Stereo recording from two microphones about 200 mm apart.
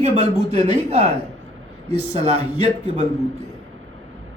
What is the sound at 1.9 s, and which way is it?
Speech, 30° right (ahead or behind).